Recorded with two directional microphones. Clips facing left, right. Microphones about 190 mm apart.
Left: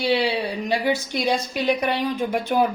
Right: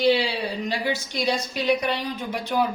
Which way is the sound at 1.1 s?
55° left (ahead or behind).